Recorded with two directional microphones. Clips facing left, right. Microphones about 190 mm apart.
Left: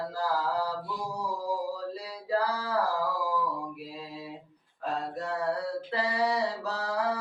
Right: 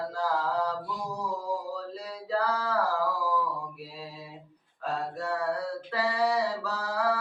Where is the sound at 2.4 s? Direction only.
10° left (ahead or behind).